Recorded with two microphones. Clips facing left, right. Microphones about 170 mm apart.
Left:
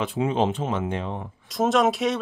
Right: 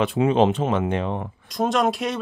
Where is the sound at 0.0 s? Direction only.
75° right (ahead or behind).